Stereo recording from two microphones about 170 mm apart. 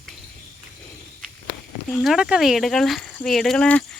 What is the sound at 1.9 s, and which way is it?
Speech, centre (ahead or behind).